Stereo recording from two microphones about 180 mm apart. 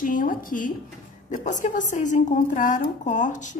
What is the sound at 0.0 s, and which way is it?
A woman's voice, 50° left (ahead or behind).